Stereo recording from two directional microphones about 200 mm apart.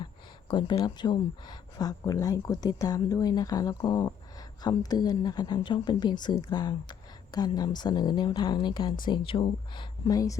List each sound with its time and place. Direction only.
0.0 s speech: 25° left (ahead or behind)